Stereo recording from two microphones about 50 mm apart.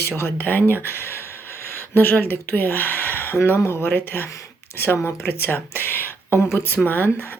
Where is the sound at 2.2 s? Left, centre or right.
Left.